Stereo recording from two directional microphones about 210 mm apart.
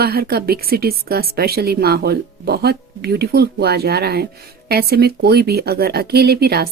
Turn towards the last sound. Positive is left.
turn(degrees=-50)  # may be behind; listen again after turning